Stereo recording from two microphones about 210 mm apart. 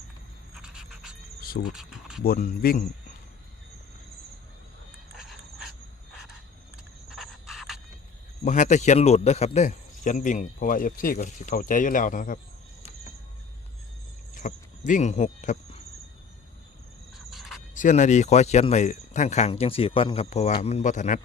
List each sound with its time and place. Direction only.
0.5 s a sound: 5° right (ahead or behind)
1.4 s insect: 45° left (ahead or behind)
1.7 s speech: 5° right (ahead or behind)
2.2 s speech: 45° left (ahead or behind)
5.1 s a sound: centre (ahead or behind)
7.1 s cricket: centre (ahead or behind)
8.4 s speech: 35° left (ahead or behind)
14.3 s speech: 40° left (ahead or behind)
17.2 s cricket: centre (ahead or behind)
17.7 s speech: 35° left (ahead or behind)